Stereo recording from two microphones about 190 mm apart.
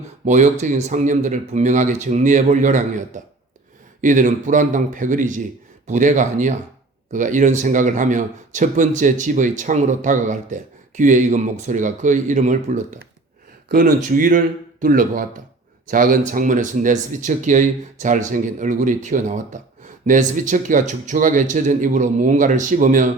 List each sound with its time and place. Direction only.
0.3 s a man's voice: 40° right (ahead or behind)
4.0 s a man's voice: 40° right (ahead or behind)